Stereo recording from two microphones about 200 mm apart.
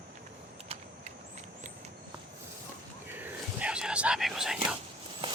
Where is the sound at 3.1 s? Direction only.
10° right (ahead or behind).